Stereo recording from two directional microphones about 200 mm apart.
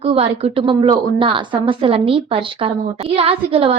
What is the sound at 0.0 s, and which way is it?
A woman's voice, 30° right (ahead or behind).